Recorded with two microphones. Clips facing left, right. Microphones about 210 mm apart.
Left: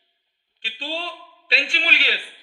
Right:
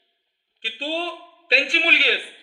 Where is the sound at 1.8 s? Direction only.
35° right (ahead or behind).